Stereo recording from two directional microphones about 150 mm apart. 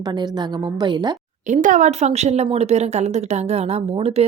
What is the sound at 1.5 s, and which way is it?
A woman's voice, 55° right (ahead or behind).